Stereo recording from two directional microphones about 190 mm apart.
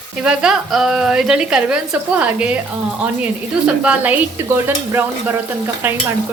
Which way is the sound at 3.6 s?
5° right (ahead or behind).